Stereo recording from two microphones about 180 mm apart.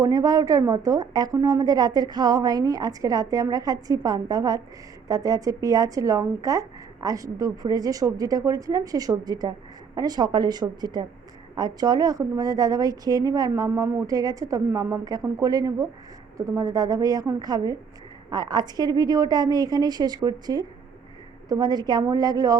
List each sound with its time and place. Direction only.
0.0 s a woman's voice: 20° right (ahead or behind)